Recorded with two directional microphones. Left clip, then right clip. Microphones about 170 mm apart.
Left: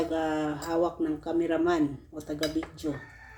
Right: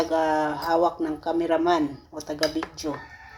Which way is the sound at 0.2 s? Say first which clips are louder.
Right 7 dB; 35° right (ahead or behind).